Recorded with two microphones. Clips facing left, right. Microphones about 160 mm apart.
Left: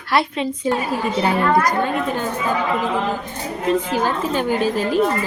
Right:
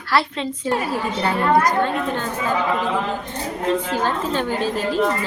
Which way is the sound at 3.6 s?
10° left (ahead or behind).